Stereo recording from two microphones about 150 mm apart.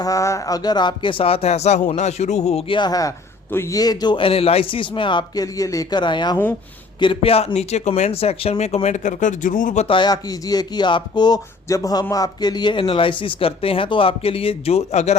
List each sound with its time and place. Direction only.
0.0 s a man's voice: 20° left (ahead or behind); by 9.8 s 60° left (ahead or behind)
9.8 s speech: 30° left (ahead or behind)